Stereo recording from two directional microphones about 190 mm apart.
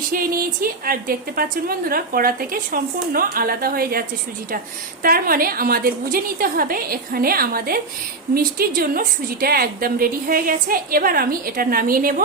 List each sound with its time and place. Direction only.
0.1 s a woman's voice: 50° right (ahead or behind)
5.0 s a woman's voice: 50° right (ahead or behind)